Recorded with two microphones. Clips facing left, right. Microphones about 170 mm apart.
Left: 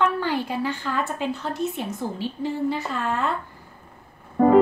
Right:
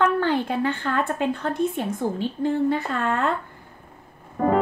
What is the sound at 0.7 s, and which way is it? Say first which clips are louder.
A woman's voice: right 2 dB; 55° right (ahead or behind).